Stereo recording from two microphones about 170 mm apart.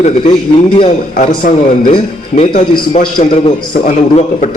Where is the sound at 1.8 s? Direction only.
35° left (ahead or behind).